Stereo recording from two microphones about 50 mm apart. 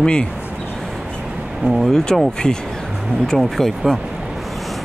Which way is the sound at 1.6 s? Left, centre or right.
Centre.